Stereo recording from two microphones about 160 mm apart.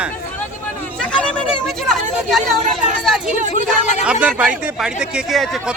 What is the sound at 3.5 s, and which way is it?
Speech, 45° left (ahead or behind).